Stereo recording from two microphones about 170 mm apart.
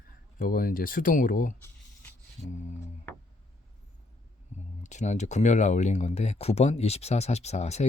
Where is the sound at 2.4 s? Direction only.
35° left (ahead or behind).